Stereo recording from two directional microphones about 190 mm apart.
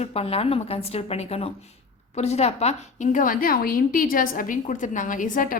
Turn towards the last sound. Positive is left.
turn(degrees=45)  # may be behind; listen again after turning